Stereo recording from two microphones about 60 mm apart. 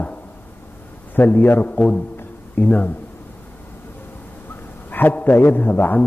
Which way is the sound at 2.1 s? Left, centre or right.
Left.